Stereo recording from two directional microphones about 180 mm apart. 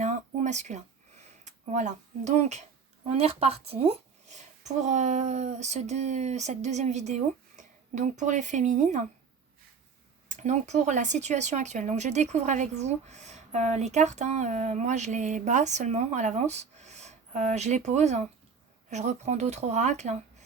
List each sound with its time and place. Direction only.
0.0 s a sound: 40° right (ahead or behind)
3.1 s speech: 35° right (ahead or behind)
10.2 s speech: 40° right (ahead or behind)